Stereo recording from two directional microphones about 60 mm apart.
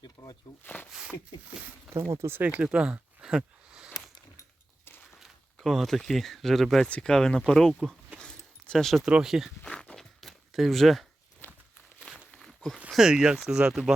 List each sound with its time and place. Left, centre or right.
0.2 s a sound: left
0.6 s speech: left
1.9 s speech: right
2.4 s speech: right
2.6 s a sound: centre
5.5 s speech: centre
8.2 s a sound: centre
9.2 s speech: centre
9.6 s walk: centre
11.4 s walk: left
12.4 s a sound: centre
12.9 s speech: centre